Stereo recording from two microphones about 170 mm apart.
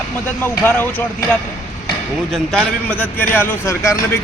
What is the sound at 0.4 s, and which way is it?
Speech, 15° left (ahead or behind).